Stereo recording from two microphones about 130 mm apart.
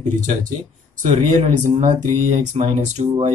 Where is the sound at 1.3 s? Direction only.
70° right (ahead or behind).